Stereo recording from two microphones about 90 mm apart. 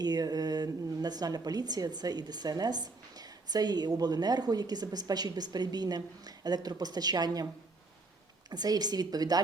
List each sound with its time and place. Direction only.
0.0 s a woman's voice: 45° right (ahead or behind)
8.4 s a woman's voice: 45° right (ahead or behind)